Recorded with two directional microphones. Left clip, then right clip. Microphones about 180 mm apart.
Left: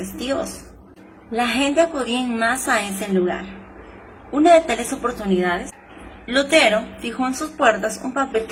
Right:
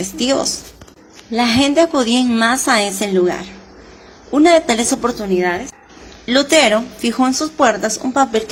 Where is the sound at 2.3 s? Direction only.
30° right (ahead or behind).